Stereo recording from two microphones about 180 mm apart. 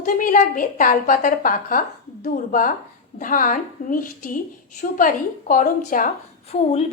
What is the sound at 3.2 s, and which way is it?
A woman's voice, 50° left (ahead or behind).